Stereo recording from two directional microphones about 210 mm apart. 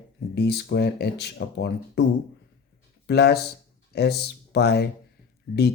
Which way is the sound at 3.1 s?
50° left (ahead or behind).